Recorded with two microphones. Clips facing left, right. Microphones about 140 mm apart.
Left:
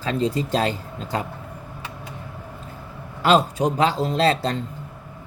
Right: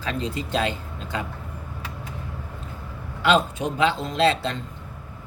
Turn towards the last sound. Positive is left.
turn(degrees=40)  # may be behind; listen again after turning